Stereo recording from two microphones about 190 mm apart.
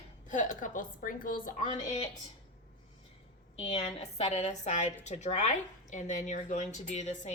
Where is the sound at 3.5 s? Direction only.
30° left (ahead or behind).